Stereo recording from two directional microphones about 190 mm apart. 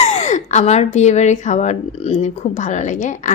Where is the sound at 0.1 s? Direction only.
40° left (ahead or behind).